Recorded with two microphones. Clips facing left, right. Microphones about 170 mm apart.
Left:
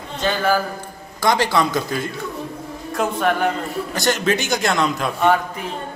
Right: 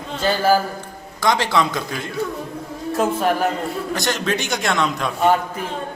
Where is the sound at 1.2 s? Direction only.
Centre (ahead or behind).